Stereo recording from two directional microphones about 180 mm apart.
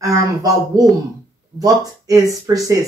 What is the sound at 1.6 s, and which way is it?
Speech, 20° right (ahead or behind).